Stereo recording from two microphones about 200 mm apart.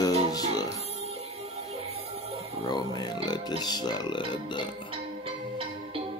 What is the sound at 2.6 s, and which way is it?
A man's voice, 20° left (ahead or behind).